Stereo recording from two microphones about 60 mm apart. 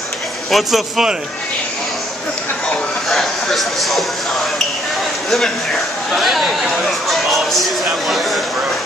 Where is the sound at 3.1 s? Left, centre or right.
Centre.